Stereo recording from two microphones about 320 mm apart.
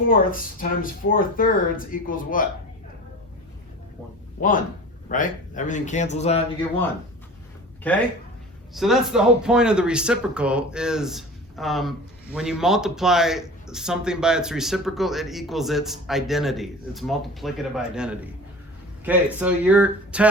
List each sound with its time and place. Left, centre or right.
0.0 s speech: left
4.4 s speech: left
8.7 s speech: centre